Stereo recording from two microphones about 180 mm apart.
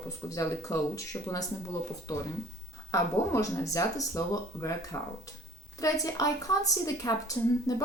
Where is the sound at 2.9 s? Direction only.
15° left (ahead or behind).